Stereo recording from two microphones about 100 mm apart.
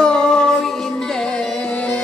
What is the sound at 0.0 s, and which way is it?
Music, 10° left (ahead or behind).